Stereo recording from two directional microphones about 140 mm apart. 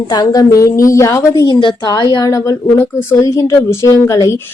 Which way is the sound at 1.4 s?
35° left (ahead or behind).